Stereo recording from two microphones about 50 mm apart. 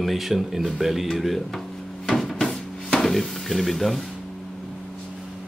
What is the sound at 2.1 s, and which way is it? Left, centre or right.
Cupboard open or close, centre.